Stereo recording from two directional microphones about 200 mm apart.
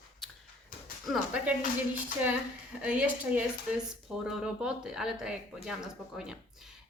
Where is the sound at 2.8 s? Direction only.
5° right (ahead or behind).